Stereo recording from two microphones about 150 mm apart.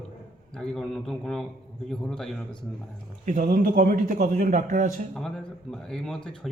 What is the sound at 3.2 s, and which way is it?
Speech, 65° right (ahead or behind).